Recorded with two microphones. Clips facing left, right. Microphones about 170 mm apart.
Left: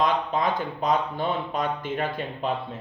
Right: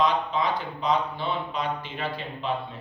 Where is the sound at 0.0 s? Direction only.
50° left (ahead or behind).